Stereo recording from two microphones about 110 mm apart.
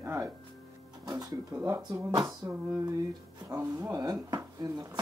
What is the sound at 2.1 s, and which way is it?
Speech, 40° right (ahead or behind).